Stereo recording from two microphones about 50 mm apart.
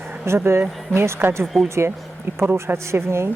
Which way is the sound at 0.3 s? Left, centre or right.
Right.